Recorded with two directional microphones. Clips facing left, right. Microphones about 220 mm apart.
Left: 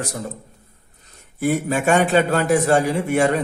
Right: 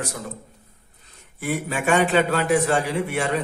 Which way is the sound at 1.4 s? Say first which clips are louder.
Left 5 dB; 40° left (ahead or behind).